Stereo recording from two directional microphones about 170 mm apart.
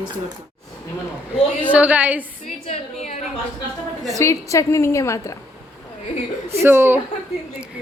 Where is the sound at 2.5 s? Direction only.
40° left (ahead or behind).